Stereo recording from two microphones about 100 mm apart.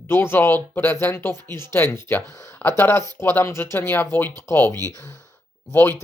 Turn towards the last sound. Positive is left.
turn(degrees=20)  # may be behind; listen again after turning